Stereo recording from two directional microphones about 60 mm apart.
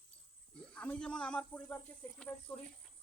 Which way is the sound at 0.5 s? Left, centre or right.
Centre.